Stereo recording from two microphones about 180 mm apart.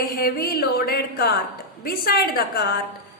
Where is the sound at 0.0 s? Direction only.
60° left (ahead or behind).